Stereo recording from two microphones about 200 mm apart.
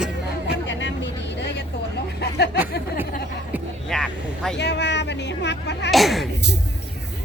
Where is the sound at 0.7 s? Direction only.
65° left (ahead or behind).